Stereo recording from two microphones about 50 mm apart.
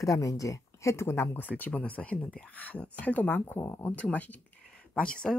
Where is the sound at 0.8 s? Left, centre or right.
Left.